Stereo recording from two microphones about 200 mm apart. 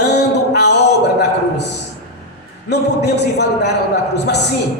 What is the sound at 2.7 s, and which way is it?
A man's voice, 55° left (ahead or behind).